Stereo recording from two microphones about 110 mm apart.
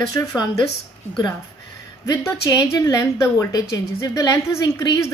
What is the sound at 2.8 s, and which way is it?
A woman's voice, 30° left (ahead or behind).